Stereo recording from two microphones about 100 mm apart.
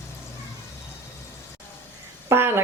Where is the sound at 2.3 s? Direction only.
25° right (ahead or behind).